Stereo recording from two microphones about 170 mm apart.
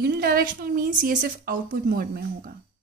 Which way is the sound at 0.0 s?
60° right (ahead or behind).